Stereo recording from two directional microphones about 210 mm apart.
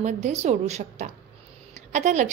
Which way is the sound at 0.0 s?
35° right (ahead or behind).